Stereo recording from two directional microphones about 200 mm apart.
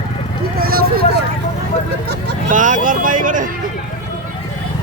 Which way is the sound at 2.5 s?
40° right (ahead or behind).